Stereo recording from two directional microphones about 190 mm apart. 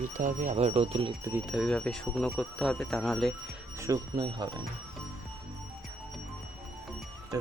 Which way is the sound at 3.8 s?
20° right (ahead or behind).